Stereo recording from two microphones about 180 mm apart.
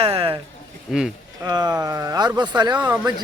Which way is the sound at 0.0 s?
30° right (ahead or behind).